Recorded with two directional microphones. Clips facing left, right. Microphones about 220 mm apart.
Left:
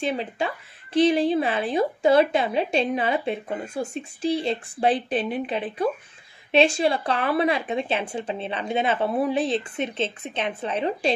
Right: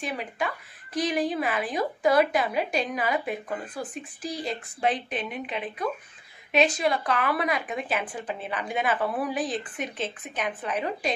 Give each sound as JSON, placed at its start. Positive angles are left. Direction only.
{"t": 0.0, "sound": "speech", "side_deg": 25}